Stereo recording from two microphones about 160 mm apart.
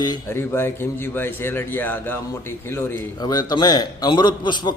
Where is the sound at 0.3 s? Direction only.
15° left (ahead or behind).